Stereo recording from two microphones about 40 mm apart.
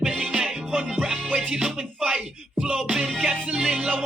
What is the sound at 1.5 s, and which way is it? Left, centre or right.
Music, centre.